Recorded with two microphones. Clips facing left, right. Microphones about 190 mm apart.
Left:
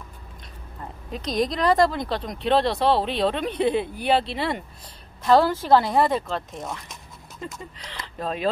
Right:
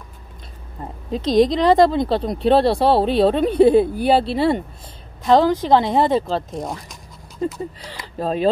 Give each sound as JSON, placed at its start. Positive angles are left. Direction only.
{"t": 0.7, "sound": "a woman's voice", "side_deg": -30}
{"t": 5.2, "sound": "a woman's voice", "side_deg": -20}